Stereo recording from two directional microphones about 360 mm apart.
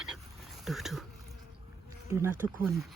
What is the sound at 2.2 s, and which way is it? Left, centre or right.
Speech, centre.